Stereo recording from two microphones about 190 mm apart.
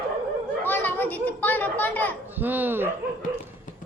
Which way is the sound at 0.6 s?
10° left (ahead or behind).